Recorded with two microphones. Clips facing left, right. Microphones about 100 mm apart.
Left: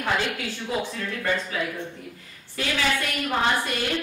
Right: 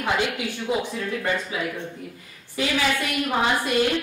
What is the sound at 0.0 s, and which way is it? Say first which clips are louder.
Speech: right 2 dB; 15° right (ahead or behind).